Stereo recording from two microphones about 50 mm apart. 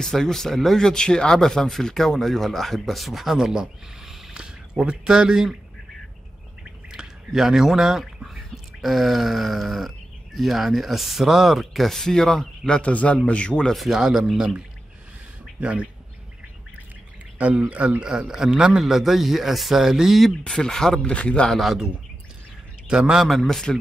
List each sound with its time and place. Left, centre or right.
0.0 s speech: centre
4.4 s speech: centre
6.9 s speech: centre
12.8 s speech: left
13.7 s a man's voice: centre
15.6 s speech: right
17.4 s speech: right
18.0 s a man's voice: centre
20.2 s speech: centre
21.5 s speech: centre
22.8 s a man's voice: centre
23.2 s speech: centre